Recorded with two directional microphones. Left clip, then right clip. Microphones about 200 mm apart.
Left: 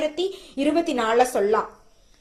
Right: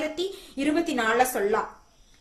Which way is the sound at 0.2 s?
5° left (ahead or behind).